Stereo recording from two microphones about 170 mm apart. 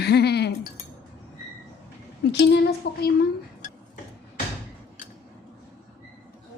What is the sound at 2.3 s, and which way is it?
Speech, 85° left.